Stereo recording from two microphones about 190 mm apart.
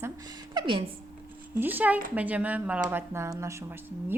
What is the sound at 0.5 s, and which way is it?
Speech, 25° right (ahead or behind).